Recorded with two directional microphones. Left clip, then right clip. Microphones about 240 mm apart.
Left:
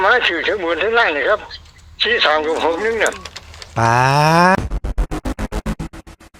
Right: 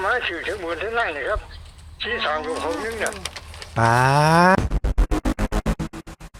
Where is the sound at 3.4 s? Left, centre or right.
Centre.